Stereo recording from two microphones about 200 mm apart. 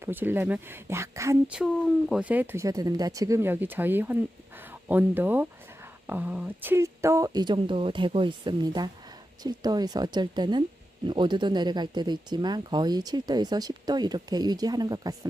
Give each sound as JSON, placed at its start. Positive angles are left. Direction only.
{"t": 0.0, "sound": "speech", "side_deg": -10}
{"t": 1.5, "sound": "speech", "side_deg": 0}